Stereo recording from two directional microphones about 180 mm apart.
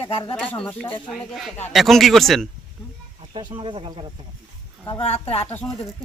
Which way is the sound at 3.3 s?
25° right (ahead or behind).